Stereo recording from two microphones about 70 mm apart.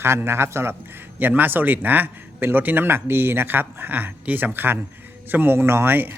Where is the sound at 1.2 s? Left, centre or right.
Right.